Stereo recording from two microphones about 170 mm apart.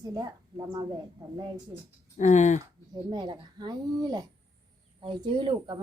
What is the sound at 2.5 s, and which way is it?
A woman's voice, 25° right (ahead or behind).